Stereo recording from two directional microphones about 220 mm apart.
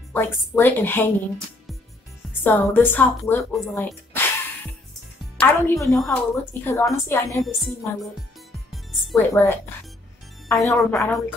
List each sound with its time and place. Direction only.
0.1 s a woman's voice: 10° left (ahead or behind)
2.4 s a woman's voice: 10° left (ahead or behind)
3.7 s a sound: 10° left (ahead or behind)
5.4 s a woman's voice: 10° left (ahead or behind)
7.4 s a woman's voice: centre (ahead or behind)
9.1 s a woman's voice: 10° left (ahead or behind)